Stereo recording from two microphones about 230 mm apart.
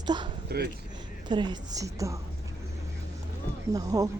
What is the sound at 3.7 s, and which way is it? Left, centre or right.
Speech, centre.